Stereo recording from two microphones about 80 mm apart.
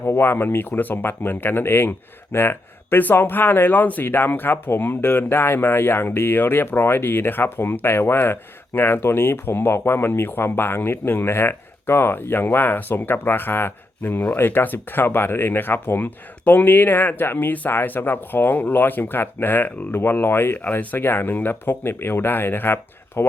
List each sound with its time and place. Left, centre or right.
0.0 s speech: left